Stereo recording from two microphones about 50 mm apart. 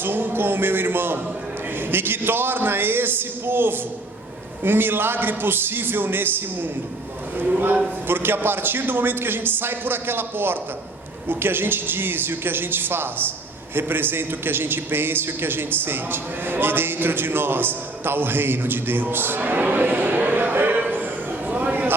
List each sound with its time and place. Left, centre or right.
0.0 s a man's voice: right
8.0 s a man's voice: right
21.4 s a sound: right